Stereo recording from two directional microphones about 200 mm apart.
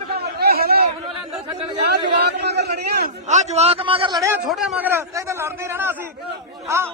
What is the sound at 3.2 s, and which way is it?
Speech, 35° right (ahead or behind).